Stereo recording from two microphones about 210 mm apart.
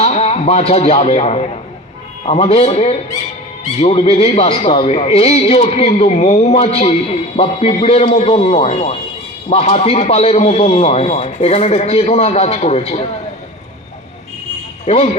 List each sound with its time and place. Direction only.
0.0 s a man's voice: 30° left (ahead or behind)
14.9 s a man's voice: 30° left (ahead or behind)